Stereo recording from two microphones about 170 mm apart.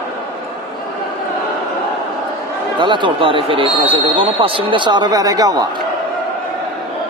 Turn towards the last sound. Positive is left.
turn(degrees=-20)  # may be behind; listen again after turning